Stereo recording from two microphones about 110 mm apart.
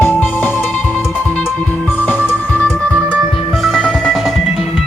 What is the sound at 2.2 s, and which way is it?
Music, 20° left (ahead or behind).